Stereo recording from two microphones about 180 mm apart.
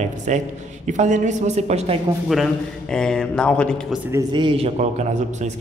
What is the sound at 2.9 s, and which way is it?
Speech, 5° left (ahead or behind).